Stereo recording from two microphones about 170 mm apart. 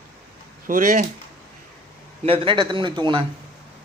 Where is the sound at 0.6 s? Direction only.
55° right (ahead or behind).